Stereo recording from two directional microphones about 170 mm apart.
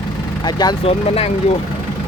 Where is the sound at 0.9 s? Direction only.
35° left (ahead or behind).